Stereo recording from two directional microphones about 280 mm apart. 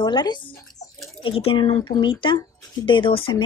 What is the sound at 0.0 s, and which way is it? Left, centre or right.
Speech, centre.